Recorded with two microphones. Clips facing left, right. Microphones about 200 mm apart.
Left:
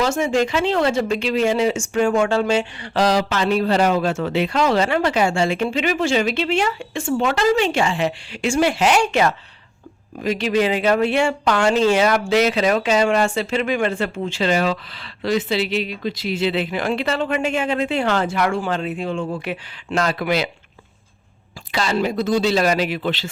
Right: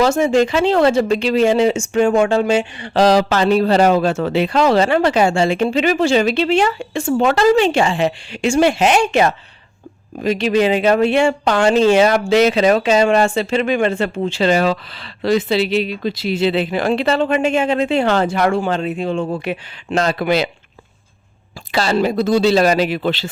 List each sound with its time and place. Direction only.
0.0 s a man's voice: 40° right (ahead or behind); by 2.9 s 15° right (ahead or behind)
2.9 s a man's voice: 30° right (ahead or behind)
21.7 s a man's voice: 35° right (ahead or behind)